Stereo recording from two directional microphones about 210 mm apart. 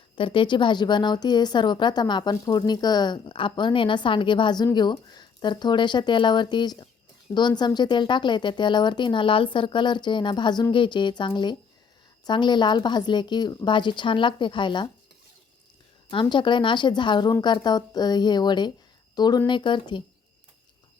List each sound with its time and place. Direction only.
0.2 s a woman's voice: 25° left (ahead or behind)
16.0 s a woman's voice: 25° left (ahead or behind)